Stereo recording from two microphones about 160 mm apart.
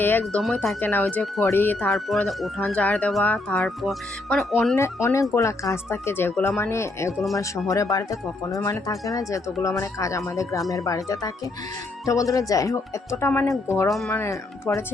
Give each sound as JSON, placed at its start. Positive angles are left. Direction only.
{"t": 0.0, "sound": "speech", "side_deg": 10}
{"t": 0.4, "sound": "speech", "side_deg": 0}
{"t": 0.8, "sound": "speech", "side_deg": 10}
{"t": 4.7, "sound": "speech", "side_deg": 20}